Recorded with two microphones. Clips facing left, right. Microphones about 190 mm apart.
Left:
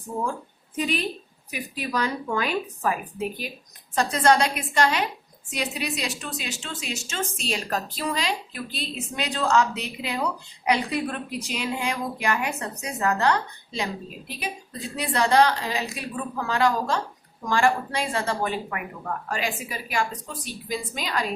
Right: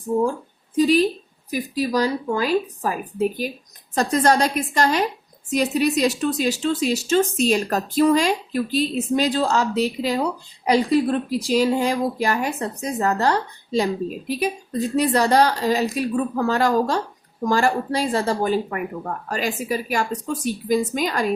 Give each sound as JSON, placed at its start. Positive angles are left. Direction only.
{"t": 0.8, "sound": "a woman's voice", "side_deg": -40}